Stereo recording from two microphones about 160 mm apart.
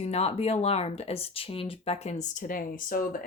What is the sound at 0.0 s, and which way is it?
Speech, 40° left (ahead or behind).